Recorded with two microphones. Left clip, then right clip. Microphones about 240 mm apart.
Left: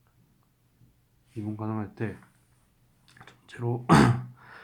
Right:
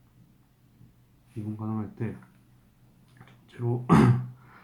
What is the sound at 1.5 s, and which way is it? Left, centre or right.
Speech, left.